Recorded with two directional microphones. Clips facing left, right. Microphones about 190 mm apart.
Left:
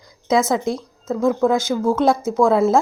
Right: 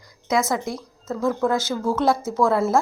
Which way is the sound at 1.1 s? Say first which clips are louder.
Left 4 dB; 15° left (ahead or behind).